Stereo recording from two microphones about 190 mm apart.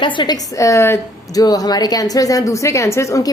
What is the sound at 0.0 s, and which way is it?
A woman's voice, 25° left (ahead or behind).